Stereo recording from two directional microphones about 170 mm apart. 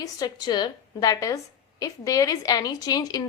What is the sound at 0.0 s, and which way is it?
A woman's voice, 25° left (ahead or behind).